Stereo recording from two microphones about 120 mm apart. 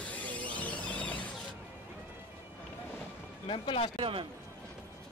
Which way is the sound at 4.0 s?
45° right (ahead or behind).